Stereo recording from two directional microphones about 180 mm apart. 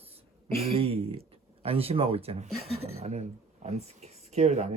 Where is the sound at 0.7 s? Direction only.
30° right (ahead or behind).